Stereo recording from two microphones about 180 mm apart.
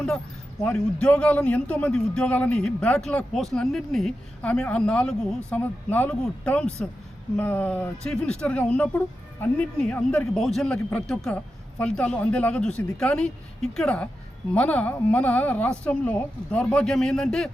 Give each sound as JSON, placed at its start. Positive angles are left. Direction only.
{"t": 0.6, "sound": "a man's voice", "side_deg": 5}